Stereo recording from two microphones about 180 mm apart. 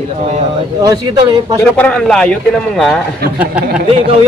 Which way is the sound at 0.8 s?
20° right (ahead or behind).